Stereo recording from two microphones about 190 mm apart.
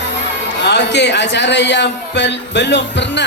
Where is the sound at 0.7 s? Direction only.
65° left (ahead or behind).